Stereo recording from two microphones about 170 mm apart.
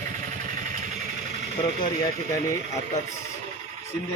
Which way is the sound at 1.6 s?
20° left (ahead or behind).